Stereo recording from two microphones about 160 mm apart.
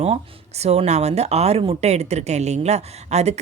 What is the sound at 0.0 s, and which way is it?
A woman's voice, 40° right (ahead or behind).